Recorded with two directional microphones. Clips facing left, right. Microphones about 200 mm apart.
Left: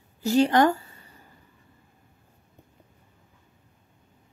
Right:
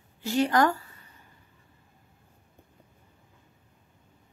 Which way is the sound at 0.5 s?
25° left (ahead or behind).